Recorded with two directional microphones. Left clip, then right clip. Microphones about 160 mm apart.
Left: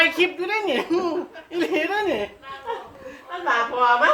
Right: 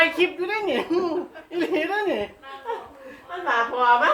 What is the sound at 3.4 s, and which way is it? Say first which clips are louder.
Speech: left 1 dB; 20° right (ahead or behind).